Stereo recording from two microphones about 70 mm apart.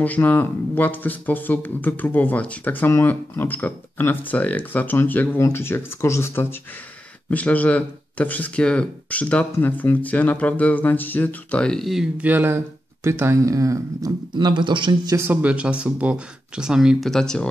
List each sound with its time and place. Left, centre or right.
0.0 s speech: left
7.2 s speech: centre
11.6 s speech: centre
12.2 s speech: right
13.4 s speech: right
14.3 s speech: right
15.4 s speech: centre
17.0 s speech: centre